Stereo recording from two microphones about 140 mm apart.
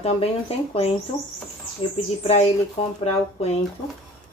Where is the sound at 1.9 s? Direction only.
50° left (ahead or behind).